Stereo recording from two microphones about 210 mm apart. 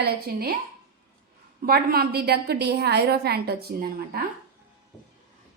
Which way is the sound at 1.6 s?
45° right (ahead or behind).